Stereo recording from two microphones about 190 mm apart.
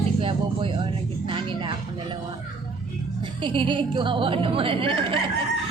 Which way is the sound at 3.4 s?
25° right (ahead or behind).